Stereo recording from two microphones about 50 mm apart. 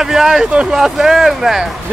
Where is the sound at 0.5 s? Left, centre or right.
Right.